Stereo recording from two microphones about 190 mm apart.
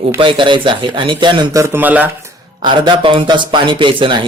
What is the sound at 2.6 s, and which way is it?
A man's voice, 25° right (ahead or behind).